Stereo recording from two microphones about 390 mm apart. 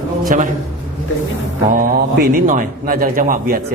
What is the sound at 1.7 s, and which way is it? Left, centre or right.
A man's voice, right.